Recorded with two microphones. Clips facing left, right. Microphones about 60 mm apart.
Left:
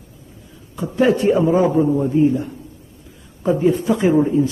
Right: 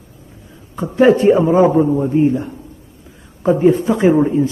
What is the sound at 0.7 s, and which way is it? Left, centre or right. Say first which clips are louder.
A man's voice: right 5 dB; right.